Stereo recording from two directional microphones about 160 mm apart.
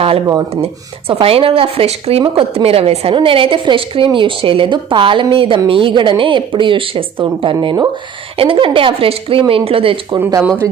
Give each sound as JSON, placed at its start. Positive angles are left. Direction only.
{"t": 0.5, "sound": "a woman's voice", "side_deg": -35}
{"t": 10.2, "sound": "speech", "side_deg": -15}